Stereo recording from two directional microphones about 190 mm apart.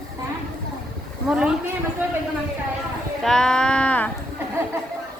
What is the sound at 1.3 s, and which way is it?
Speech, 5° right (ahead or behind).